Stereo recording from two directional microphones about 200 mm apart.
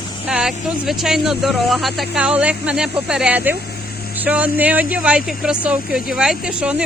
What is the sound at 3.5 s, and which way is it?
Vehicle, 50° left (ahead or behind).